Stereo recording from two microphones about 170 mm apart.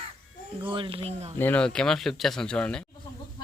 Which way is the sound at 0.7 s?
30° right (ahead or behind).